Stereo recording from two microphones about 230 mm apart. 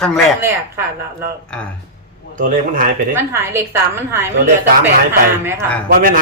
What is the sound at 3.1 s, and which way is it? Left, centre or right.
A woman's voice, centre.